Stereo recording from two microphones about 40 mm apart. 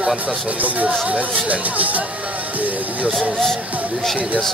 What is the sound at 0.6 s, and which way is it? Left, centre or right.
Speech, right.